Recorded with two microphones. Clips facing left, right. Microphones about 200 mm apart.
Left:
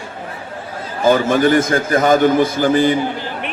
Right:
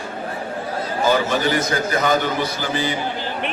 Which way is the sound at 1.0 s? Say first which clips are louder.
Left 7 dB; 50° left (ahead or behind).